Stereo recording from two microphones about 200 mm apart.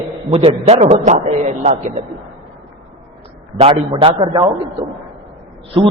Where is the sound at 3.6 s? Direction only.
25° right (ahead or behind).